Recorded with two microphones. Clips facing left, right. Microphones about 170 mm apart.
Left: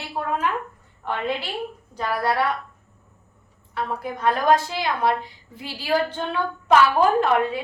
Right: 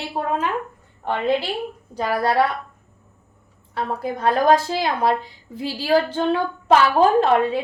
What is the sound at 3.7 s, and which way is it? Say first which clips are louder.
A woman's voice: right 3 dB; 35° right (ahead or behind).